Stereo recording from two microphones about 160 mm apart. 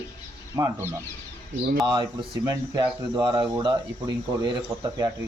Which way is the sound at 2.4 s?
25° right (ahead or behind).